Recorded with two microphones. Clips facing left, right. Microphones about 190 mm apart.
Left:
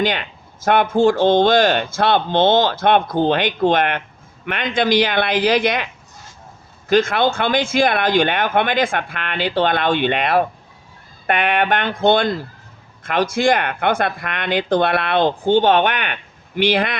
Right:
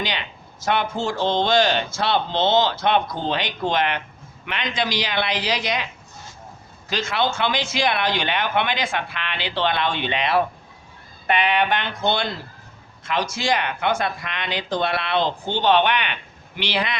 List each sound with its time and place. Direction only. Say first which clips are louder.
0.0 s speech: left 8 dB; 50° left (ahead or behind)